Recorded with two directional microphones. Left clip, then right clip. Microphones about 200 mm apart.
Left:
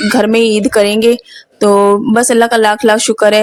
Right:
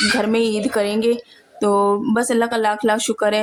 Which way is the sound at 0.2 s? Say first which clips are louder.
Left 9 dB; 35° left (ahead or behind).